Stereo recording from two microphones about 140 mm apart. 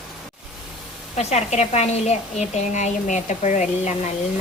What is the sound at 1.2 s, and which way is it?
A woman's voice, 50° left (ahead or behind).